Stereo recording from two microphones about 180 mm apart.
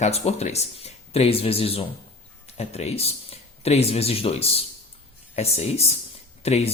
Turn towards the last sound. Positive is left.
turn(degrees=35)  # may be behind; listen again after turning